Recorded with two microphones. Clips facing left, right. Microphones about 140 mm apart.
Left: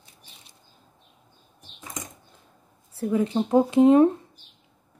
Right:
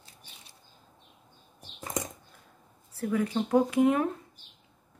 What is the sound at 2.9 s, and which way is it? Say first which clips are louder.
Speech: left 5 dB; 25° left (ahead or behind).